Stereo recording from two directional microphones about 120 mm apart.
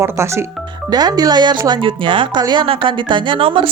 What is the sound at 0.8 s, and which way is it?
A woman's voice, 35° right (ahead or behind).